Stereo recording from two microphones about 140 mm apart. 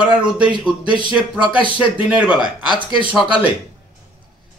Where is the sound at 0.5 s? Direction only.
35° right (ahead or behind).